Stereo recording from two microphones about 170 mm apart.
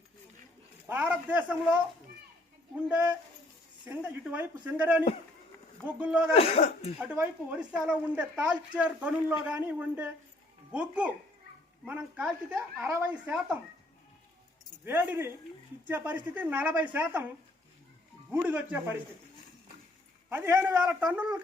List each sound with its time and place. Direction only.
0.9 s a woman's voice: 10° right (ahead or behind)
3.8 s a woman's voice: 10° right (ahead or behind)
6.3 s speech: 35° left (ahead or behind)
7.0 s a woman's voice: 10° right (ahead or behind)
14.8 s a woman's voice: 10° right (ahead or behind)
18.3 s a woman's voice: 10° right (ahead or behind)
20.3 s a woman's voice: 15° right (ahead or behind)